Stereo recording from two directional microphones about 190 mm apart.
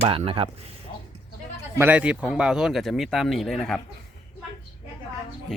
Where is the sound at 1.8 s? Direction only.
5° right (ahead or behind).